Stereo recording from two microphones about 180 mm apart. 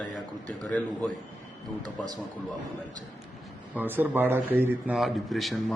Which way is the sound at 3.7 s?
10° right (ahead or behind).